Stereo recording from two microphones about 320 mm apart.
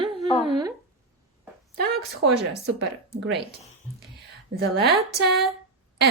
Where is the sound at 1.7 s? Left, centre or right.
Right.